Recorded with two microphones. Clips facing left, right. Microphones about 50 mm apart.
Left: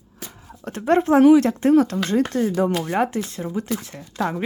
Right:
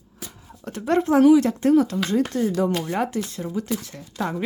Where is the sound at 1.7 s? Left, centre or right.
Left.